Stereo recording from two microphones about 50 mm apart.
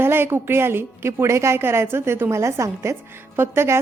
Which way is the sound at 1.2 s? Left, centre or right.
Right.